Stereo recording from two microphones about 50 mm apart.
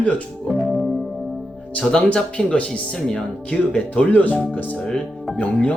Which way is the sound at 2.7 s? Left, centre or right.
Centre.